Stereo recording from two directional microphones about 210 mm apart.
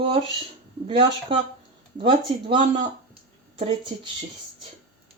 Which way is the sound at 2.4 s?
25° right (ahead or behind).